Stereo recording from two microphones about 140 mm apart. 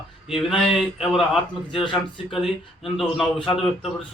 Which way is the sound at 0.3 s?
Centre (ahead or behind).